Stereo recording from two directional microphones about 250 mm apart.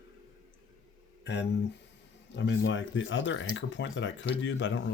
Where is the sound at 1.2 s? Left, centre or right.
Left.